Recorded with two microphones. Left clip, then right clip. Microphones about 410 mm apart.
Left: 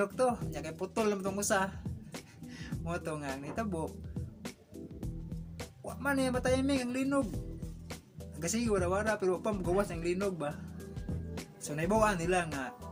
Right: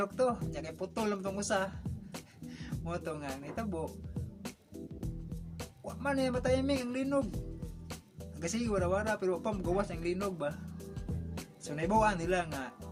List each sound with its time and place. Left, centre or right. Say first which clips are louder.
0.0 s speech: left 1 dB; right
2.5 s music: left 1 dB; right
6.0 s speech: left 1 dB; right
8.4 s speech: left 1 dB; right
11.6 s speech: even; right